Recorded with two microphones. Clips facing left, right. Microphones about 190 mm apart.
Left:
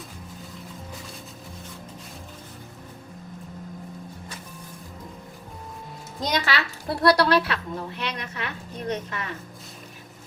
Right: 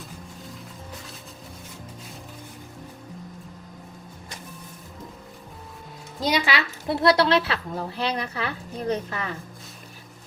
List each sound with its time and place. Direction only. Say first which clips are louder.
6.1 s a woman's voice: right 2 dB; 5° right (ahead or behind); by 9.3 s 35° right (ahead or behind)